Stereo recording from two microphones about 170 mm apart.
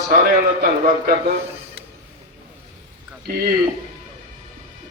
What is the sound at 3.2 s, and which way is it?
Speech, 65° right (ahead or behind).